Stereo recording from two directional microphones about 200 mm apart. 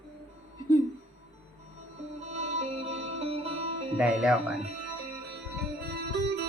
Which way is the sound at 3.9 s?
5° right (ahead or behind).